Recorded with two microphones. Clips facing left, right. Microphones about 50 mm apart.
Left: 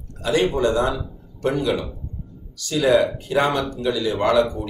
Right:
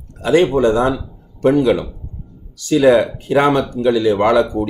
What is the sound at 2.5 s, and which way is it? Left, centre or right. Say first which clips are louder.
Speech: right 6 dB; right.